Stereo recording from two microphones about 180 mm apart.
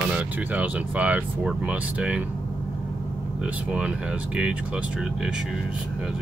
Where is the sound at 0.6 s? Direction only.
10° right (ahead or behind).